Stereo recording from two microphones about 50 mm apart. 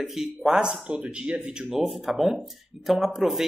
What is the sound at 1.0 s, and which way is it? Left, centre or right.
Speech, right.